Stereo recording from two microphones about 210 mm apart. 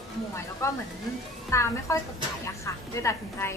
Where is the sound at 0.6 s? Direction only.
15° left (ahead or behind).